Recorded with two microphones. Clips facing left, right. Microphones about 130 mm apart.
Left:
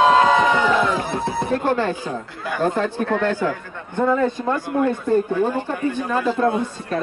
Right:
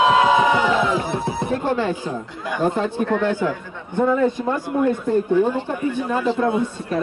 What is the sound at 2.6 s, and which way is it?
Speech, 15° right (ahead or behind).